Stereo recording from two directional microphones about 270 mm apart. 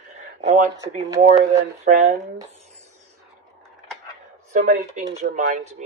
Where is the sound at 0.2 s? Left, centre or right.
Right.